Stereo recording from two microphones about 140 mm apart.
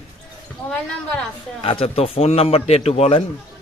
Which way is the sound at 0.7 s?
10° left (ahead or behind).